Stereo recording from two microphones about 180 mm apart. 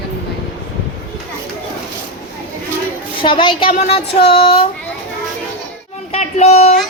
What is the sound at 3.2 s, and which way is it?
Speech, 30° left (ahead or behind).